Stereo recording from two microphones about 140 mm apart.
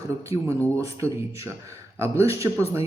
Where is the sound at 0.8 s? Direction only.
20° right (ahead or behind).